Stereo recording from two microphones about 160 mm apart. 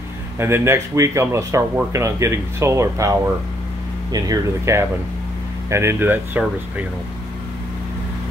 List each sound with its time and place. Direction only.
0.4 s speech: 15° right (ahead or behind)